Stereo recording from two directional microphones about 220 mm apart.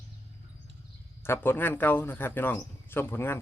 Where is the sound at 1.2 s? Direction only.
10° left (ahead or behind).